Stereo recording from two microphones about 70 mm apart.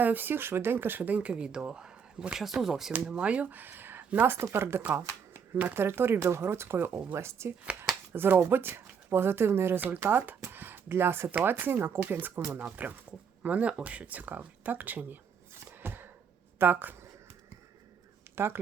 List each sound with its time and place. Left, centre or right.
0.0 s speech: right; by 2.9 s centre
2.9 s speech: centre; by 12.5 s right
12.5 s speech: right
15.6 s a sound: right
16.6 s speech: right
18.3 s speech: right